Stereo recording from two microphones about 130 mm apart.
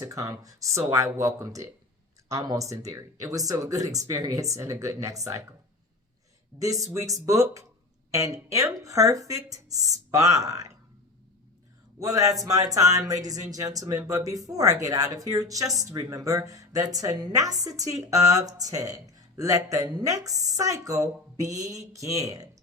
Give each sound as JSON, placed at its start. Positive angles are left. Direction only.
{"t": 0.0, "sound": "a woman's voice", "side_deg": -25}
{"t": 6.6, "sound": "a woman's voice", "side_deg": -25}
{"t": 11.9, "sound": "a woman's voice", "side_deg": -25}